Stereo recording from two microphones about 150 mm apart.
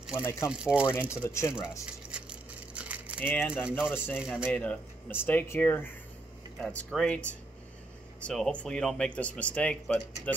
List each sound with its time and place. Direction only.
0.1 s speech: 15° left (ahead or behind)
0.5 s speech: 5° right (ahead or behind)
0.8 s speech: 20° left (ahead or behind)
1.9 s a sound: 5° right (ahead or behind)
3.2 s speech: 15° left (ahead or behind)
3.6 s speech: 5° right (ahead or behind)
3.9 s speech: 15° left (ahead or behind)